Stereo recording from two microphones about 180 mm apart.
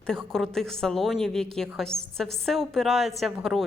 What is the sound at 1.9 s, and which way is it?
Speech, 20° left (ahead or behind).